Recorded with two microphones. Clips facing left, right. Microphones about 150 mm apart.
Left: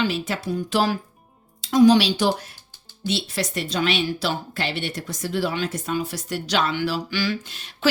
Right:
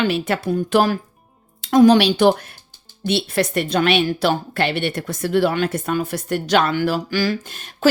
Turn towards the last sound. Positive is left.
turn(degrees=-50)  # may be behind; listen again after turning